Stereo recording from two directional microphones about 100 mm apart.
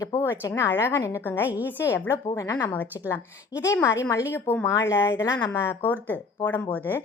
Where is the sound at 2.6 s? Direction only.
20° left (ahead or behind).